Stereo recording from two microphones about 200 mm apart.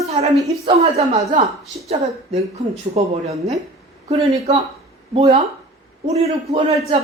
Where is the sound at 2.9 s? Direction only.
35° right (ahead or behind).